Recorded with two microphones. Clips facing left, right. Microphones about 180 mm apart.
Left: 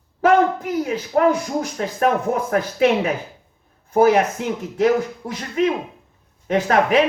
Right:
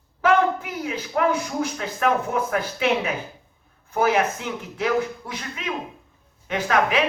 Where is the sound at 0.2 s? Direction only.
40° left (ahead or behind).